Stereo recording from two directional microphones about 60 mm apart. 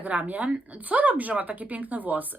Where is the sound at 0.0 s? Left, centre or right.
Right.